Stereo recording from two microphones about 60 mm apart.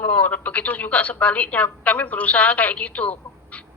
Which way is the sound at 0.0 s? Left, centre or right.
Left.